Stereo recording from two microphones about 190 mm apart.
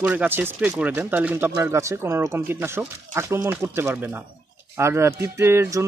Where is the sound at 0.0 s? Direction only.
10° right (ahead or behind).